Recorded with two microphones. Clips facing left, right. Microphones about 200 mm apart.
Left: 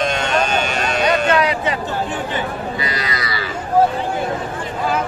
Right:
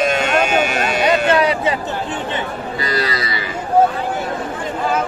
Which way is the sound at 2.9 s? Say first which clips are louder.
Right 3 dB; 35° right (ahead or behind).